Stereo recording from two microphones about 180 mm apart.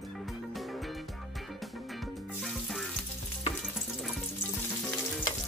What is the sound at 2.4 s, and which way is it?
Music, centre (ahead or behind).